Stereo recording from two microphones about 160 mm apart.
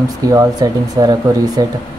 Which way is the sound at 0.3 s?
20° right (ahead or behind).